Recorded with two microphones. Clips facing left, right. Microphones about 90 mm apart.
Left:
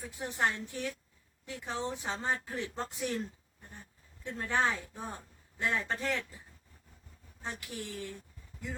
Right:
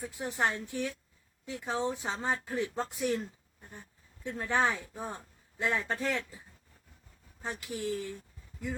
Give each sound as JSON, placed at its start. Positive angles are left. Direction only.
{"t": 0.2, "sound": "speech", "side_deg": -20}
{"t": 4.2, "sound": "speech", "side_deg": -15}
{"t": 7.4, "sound": "speech", "side_deg": -15}